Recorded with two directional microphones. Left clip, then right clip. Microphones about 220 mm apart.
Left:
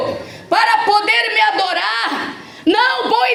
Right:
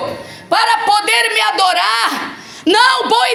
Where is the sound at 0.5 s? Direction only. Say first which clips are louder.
Right 1 dB; 15° right (ahead or behind).